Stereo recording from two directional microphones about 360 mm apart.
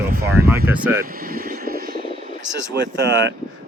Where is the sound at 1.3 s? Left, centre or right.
Right.